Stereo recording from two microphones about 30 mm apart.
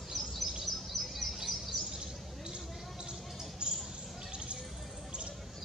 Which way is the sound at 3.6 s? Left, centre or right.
Right.